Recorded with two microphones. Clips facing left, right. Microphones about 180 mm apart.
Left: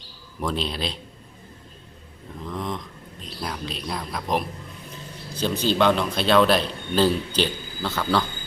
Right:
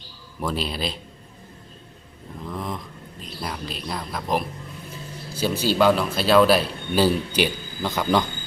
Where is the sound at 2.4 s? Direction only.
5° right (ahead or behind).